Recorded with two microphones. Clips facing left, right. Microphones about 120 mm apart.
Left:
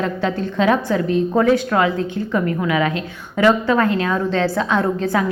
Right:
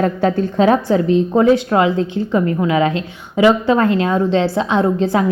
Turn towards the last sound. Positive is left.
turn(degrees=-25)  # may be behind; listen again after turning